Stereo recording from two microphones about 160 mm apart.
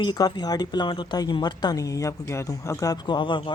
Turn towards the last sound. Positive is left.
turn(degrees=30)  # may be behind; listen again after turning